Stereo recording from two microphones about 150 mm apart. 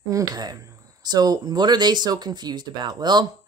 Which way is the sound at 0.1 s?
25° right (ahead or behind).